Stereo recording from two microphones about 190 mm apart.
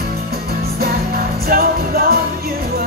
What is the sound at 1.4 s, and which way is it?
Music, 50° right (ahead or behind).